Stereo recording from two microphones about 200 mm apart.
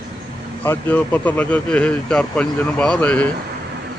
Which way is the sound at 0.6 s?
10° left (ahead or behind).